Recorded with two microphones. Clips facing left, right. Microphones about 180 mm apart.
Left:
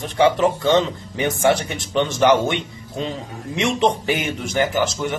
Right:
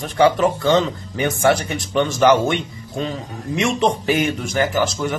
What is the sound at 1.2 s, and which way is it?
Speech, 20° left (ahead or behind).